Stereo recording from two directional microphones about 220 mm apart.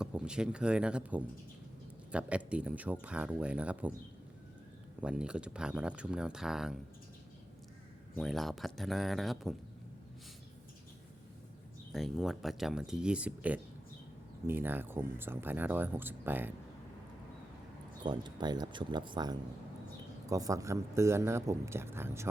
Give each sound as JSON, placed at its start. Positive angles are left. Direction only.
{"t": 0.0, "sound": "speech", "side_deg": -5}
{"t": 4.9, "sound": "speech", "side_deg": -5}
{"t": 8.1, "sound": "speech", "side_deg": 0}
{"t": 11.9, "sound": "speech", "side_deg": 0}
{"t": 18.0, "sound": "speech", "side_deg": -20}